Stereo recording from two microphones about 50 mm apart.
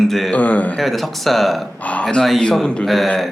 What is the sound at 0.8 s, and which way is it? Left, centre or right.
Speech, centre.